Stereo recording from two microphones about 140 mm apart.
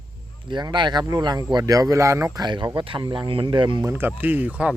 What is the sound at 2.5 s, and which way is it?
Speech, 30° right (ahead or behind).